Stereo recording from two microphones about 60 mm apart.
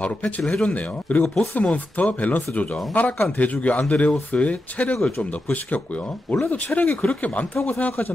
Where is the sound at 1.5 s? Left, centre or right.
Left.